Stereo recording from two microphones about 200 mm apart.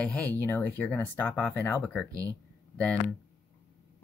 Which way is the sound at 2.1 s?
15° right (ahead or behind).